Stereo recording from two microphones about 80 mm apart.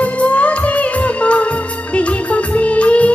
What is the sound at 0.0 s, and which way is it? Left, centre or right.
Music, centre.